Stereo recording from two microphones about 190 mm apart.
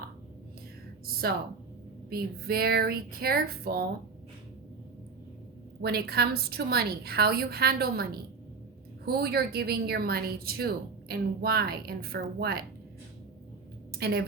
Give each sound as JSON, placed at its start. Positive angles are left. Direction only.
{"t": 2.0, "sound": "speech", "side_deg": -55}
{"t": 5.8, "sound": "a woman's voice", "side_deg": -55}
{"t": 14.0, "sound": "a woman's voice", "side_deg": -55}